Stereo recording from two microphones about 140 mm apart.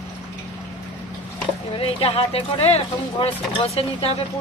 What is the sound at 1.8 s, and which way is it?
Speech, 45° left (ahead or behind).